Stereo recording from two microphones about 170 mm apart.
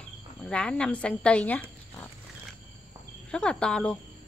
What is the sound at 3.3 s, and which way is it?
Speech, 5° left (ahead or behind).